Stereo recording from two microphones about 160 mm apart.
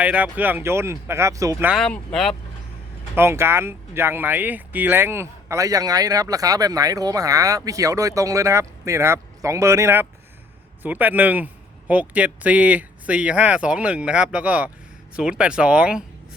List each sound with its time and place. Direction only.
0.0 s a man's voice: 10° right (ahead or behind)
1.7 s speech: centre (ahead or behind)
3.2 s a man's voice: 15° right (ahead or behind)